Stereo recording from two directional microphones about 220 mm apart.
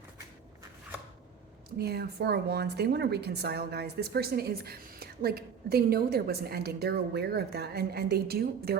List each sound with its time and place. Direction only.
1.8 s a woman's voice: 45° right (ahead or behind)